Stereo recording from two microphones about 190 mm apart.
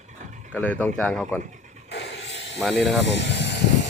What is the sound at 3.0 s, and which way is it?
Vehicle, 65° left (ahead or behind).